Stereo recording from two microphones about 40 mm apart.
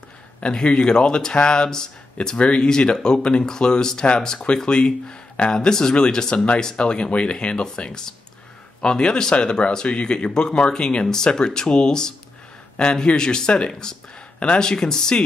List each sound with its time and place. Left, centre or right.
0.4 s speech: left